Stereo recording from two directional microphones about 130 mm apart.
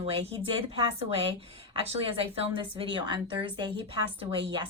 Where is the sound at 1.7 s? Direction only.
45° right (ahead or behind).